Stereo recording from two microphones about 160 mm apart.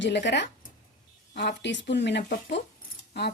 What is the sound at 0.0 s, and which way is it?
Speech, 90° left.